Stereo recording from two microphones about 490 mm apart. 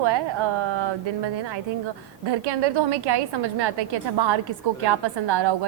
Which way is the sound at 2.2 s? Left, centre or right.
Right.